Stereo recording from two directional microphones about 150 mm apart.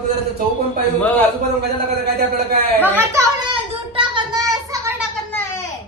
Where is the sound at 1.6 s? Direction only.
90° right.